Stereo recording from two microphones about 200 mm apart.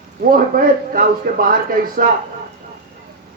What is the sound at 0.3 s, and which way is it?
Speech, 45° right (ahead or behind).